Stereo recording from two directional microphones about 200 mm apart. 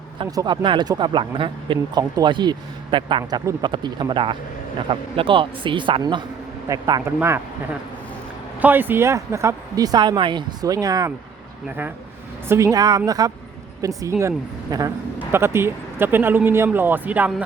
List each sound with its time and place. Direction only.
0.2 s speech: 20° right (ahead or behind)
8.6 s speech: 10° right (ahead or behind)
12.5 s speech: 15° right (ahead or behind)